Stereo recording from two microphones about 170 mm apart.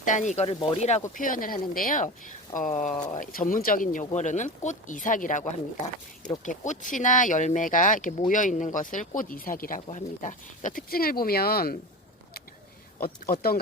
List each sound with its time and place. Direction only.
0.0 s speech: 45° left (ahead or behind)
1.1 s speech: 55° left (ahead or behind)
13.0 s speech: 60° left (ahead or behind)